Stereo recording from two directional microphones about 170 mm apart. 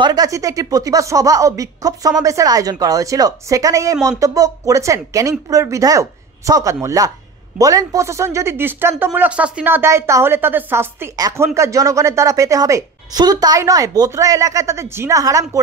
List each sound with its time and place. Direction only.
0.0 s speech: 20° right (ahead or behind)